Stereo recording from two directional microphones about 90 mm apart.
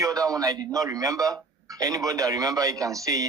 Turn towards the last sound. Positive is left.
turn(degrees=-40)  # may be behind; listen again after turning